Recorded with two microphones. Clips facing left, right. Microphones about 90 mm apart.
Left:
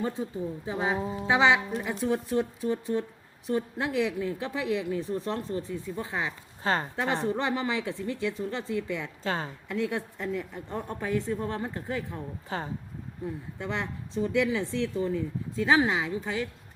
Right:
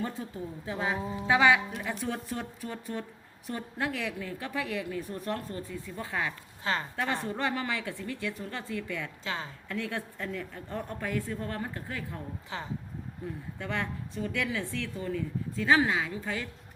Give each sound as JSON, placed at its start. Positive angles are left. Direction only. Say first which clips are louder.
{"t": 0.0, "sound": "speech", "louder": "left 4 dB", "side_deg": 20}
{"t": 9.2, "sound": "a woman's voice", "louder": "left 7 dB", "side_deg": 40}
{"t": 9.6, "sound": "speech", "louder": "left 5 dB", "side_deg": 20}
{"t": 13.6, "sound": "speech", "louder": "even", "side_deg": 20}